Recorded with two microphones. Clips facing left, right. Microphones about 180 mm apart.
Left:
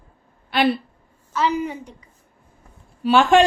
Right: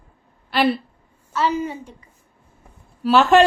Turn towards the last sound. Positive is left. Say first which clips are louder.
# right 1 dB
turn(degrees=0)  # may be behind; listen again after turning